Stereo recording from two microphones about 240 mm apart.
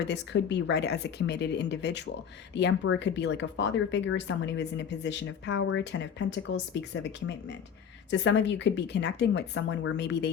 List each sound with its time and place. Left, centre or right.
0.0 s speech: left